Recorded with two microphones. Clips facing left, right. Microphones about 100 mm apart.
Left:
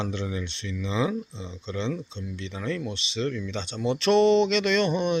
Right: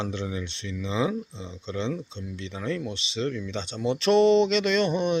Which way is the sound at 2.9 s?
30° right (ahead or behind).